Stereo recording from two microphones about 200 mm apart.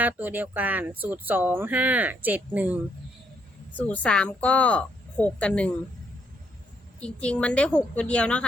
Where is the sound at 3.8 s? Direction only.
5° left (ahead or behind).